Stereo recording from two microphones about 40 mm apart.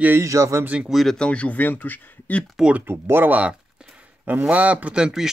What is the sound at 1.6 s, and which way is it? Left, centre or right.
Speech, left.